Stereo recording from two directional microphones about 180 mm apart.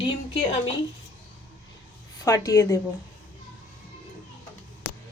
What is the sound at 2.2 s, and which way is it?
Speech, 20° left (ahead or behind).